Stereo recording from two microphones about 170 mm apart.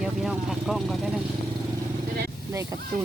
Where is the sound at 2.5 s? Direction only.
15° right (ahead or behind).